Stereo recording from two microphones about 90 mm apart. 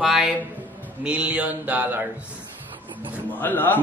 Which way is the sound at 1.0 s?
10° right (ahead or behind).